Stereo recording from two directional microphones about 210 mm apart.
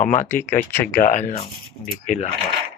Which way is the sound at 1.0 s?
35° left (ahead or behind).